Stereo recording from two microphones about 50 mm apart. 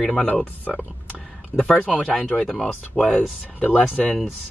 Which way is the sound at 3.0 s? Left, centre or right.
Left.